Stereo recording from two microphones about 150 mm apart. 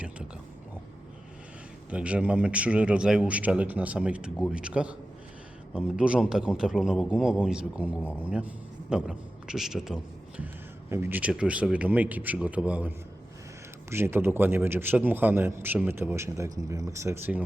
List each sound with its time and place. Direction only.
1.9 s a man's voice: 10° right (ahead or behind)
13.9 s a man's voice: 15° right (ahead or behind)